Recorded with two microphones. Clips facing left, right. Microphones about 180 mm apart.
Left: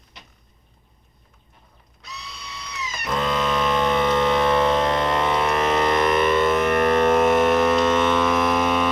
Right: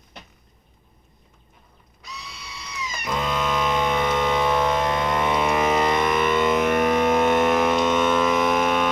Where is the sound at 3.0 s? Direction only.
5° right (ahead or behind).